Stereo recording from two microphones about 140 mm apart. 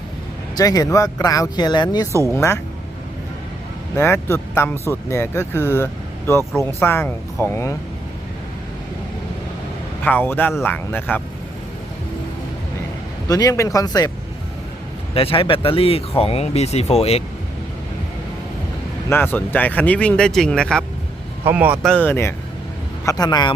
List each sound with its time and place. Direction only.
0.5 s speech: 25° left (ahead or behind)
2.3 s speech: 20° left (ahead or behind)
3.9 s speech: 15° left (ahead or behind)
10.0 s speech: 15° left (ahead or behind)
13.2 s speech: 25° left (ahead or behind)
15.1 s speech: 40° left (ahead or behind)
19.0 s speech: 15° left (ahead or behind)
21.4 s speech: 10° right (ahead or behind)
21.8 s speech: 10° left (ahead or behind)
23.0 s speech: 30° left (ahead or behind)